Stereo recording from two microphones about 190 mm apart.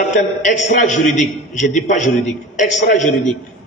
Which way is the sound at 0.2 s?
45° left (ahead or behind).